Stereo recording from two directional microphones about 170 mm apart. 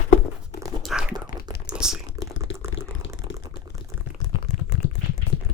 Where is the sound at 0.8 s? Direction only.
5° right (ahead or behind).